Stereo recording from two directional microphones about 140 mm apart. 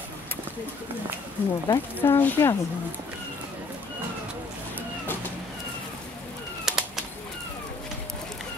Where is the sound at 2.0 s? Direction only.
15° left (ahead or behind).